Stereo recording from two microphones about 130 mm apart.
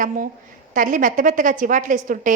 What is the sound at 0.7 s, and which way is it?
A woman's voice, 85° right.